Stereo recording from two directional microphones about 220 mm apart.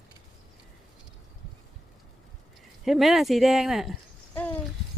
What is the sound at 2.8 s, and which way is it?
Speech, centre (ahead or behind).